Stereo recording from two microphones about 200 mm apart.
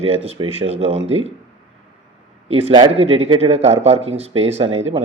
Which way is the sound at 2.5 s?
30° right (ahead or behind).